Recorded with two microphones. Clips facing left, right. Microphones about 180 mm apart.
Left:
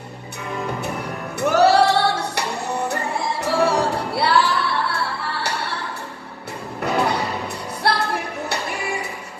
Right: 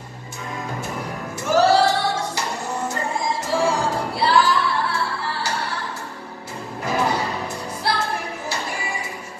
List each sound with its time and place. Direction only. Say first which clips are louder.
1.4 s music: left 1 dB; 65° left (ahead or behind)
6.8 s music: left 1 dB; 65° left (ahead or behind)